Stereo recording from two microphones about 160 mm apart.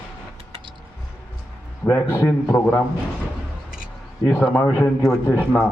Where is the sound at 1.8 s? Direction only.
15° left (ahead or behind).